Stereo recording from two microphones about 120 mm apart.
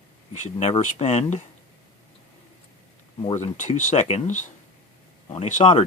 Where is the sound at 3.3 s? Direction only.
85° left.